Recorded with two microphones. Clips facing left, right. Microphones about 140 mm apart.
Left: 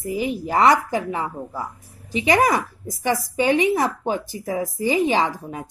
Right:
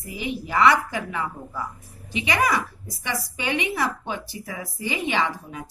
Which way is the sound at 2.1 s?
45° left (ahead or behind).